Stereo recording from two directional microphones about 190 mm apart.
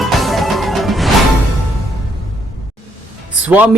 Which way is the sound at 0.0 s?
Centre (ahead or behind).